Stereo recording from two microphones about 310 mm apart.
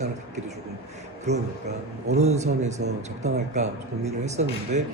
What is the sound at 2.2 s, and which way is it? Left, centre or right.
Speech, right.